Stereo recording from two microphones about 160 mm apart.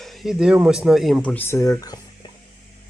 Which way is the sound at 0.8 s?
Centre (ahead or behind).